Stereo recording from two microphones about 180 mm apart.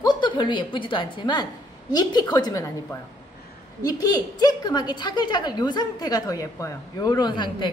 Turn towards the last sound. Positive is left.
turn(degrees=25)  # may be behind; listen again after turning